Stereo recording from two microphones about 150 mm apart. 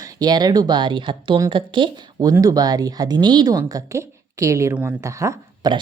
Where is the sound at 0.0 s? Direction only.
25° right (ahead or behind).